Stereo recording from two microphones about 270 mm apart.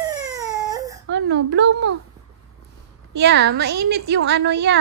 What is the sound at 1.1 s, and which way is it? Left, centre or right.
Speech, right.